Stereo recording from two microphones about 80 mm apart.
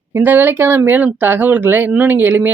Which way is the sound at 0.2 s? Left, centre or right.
Right.